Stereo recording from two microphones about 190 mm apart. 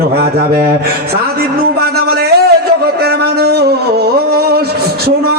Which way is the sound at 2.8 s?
55° right (ahead or behind).